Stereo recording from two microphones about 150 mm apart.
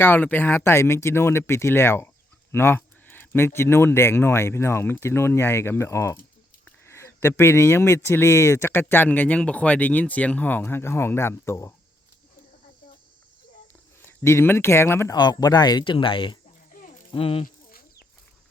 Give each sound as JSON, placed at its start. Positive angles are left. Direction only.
{"t": 0.0, "sound": "speech", "side_deg": 15}
{"t": 14.0, "sound": "speech", "side_deg": 15}
{"t": 15.1, "sound": "speech", "side_deg": 25}
{"t": 17.4, "sound": "bird", "side_deg": 80}